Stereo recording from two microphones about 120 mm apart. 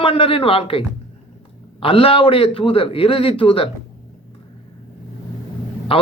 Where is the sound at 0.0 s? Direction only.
50° left (ahead or behind).